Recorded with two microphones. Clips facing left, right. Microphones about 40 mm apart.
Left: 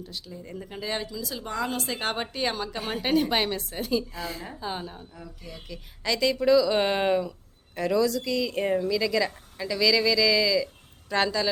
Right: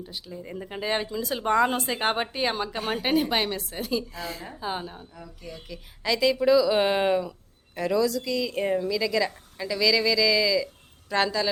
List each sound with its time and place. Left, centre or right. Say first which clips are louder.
0.0 s a woman's voice: right 2 dB; centre